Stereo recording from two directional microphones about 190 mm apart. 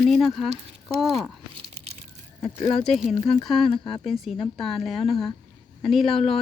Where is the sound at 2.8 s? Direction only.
Centre (ahead or behind).